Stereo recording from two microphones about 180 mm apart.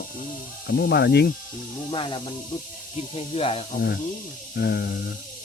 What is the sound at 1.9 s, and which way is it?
Speech, 25° left (ahead or behind).